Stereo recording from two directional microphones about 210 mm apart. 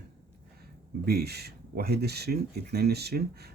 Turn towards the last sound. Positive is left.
turn(degrees=-50)  # may be behind; listen again after turning